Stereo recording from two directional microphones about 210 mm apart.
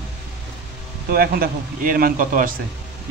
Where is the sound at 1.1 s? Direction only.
45° right (ahead or behind).